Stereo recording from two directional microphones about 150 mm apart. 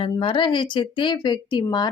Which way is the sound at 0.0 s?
35° left (ahead or behind).